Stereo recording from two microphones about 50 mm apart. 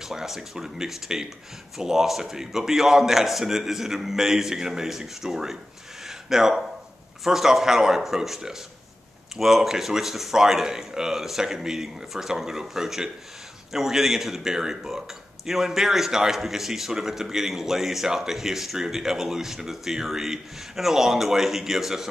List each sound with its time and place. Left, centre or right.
0.0 s speech: centre
6.0 s a sound: centre
7.2 s speech: centre